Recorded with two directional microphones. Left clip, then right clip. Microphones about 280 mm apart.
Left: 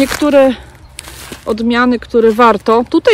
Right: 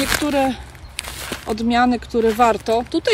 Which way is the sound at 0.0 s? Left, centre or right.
Centre.